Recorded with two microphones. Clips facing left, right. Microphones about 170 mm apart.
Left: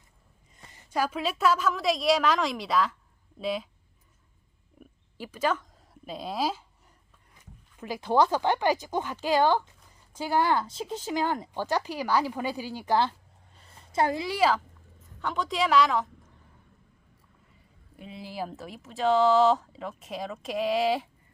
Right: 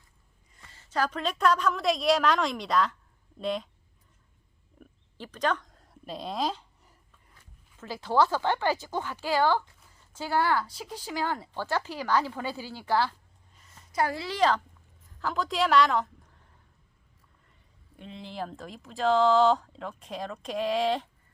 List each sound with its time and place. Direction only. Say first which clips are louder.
0.5 s a woman's voice: left 1 dB; 20° left (ahead or behind); by 3.7 s centre (ahead or behind)
4.8 s oink: left 3 dB; 10° left (ahead or behind)
7.8 s a woman's voice: left 1 dB; 15° left (ahead or behind)
17.9 s speech: left 1 dB; 5° left (ahead or behind)